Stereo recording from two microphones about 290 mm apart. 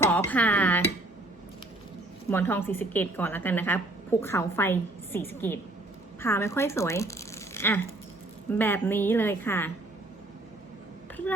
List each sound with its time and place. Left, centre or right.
0.1 s speech: centre
2.3 s a woman's voice: centre